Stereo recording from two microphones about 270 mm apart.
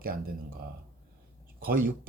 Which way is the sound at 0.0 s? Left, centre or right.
Right.